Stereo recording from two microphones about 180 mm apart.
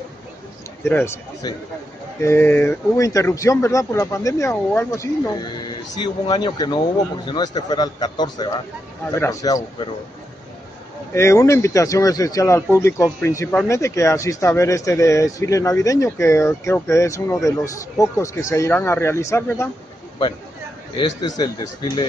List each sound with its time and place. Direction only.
0.8 s speech: 15° left (ahead or behind)
11.1 s speech: 15° left (ahead or behind)
21.2 s speech: 25° left (ahead or behind)